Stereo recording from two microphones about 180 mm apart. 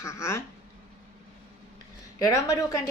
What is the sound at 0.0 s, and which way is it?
Speech, 15° left (ahead or behind).